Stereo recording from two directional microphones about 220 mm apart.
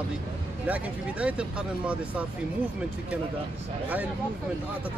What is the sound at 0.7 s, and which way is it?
Speech, 5° right (ahead or behind).